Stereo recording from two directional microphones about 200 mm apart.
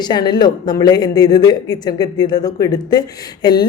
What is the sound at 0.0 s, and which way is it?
A woman's voice, 20° left (ahead or behind).